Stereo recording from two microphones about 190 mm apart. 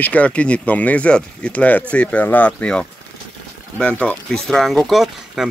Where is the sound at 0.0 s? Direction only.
5° left (ahead or behind).